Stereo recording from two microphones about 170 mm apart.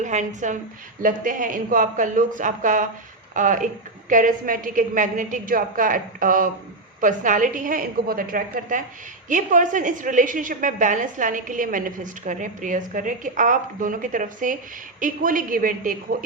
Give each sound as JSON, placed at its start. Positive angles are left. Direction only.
{"t": 0.0, "sound": "a woman's voice", "side_deg": -45}